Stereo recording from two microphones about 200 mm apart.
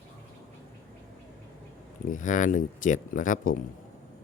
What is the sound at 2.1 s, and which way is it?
Speech, 40° left (ahead or behind).